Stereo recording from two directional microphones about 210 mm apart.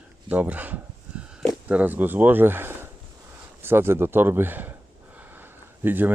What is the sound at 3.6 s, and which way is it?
Speech, 10° right (ahead or behind).